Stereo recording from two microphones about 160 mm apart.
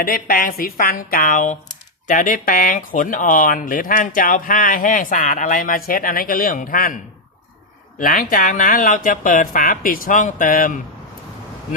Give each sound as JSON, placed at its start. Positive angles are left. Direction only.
{"t": 0.0, "sound": "speech", "side_deg": 65}
{"t": 7.9, "sound": "speech", "side_deg": 60}